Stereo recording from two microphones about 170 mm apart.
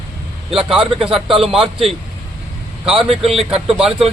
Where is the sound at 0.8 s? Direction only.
35° right (ahead or behind).